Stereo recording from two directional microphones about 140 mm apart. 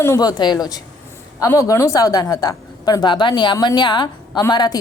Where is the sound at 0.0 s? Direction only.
25° left (ahead or behind).